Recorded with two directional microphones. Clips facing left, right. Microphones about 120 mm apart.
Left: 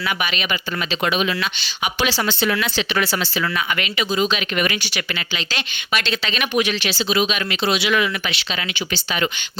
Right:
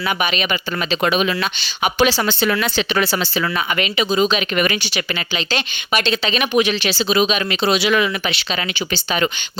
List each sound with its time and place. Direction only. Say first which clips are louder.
0.2 s speech: right 4 dB; 25° right (ahead or behind)
0.9 s speech: right 3 dB; 45° right (ahead or behind)
3.8 s speech: right 6 dB; 25° right (ahead or behind)
4.5 s speech: right 3 dB; 45° right (ahead or behind)
4.8 s speech: right 3 dB; 25° right (ahead or behind)